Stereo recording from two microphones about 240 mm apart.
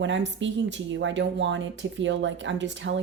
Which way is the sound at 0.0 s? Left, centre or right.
Right.